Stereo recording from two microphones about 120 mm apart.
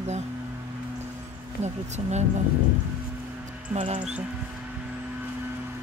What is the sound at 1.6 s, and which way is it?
Speech, 70° right (ahead or behind).